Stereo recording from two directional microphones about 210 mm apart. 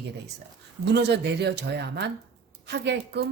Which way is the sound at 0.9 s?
55° right (ahead or behind).